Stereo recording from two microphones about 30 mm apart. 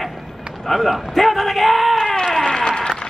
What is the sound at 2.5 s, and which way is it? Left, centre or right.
Applause, left.